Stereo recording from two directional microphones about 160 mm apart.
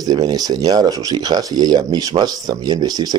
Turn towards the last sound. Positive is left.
turn(degrees=-25)  # may be behind; listen again after turning